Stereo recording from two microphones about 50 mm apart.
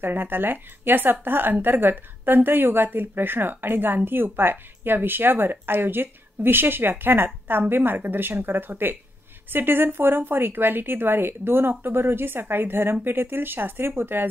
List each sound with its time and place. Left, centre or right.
0.0 s a woman's voice: right